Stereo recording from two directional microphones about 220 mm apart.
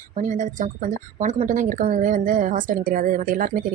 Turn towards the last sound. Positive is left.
turn(degrees=-40)  # may be behind; listen again after turning